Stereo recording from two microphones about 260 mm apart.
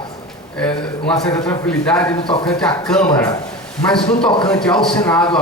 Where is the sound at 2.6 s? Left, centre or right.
Centre.